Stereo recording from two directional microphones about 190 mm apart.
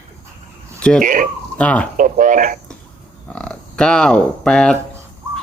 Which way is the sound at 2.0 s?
40° right (ahead or behind).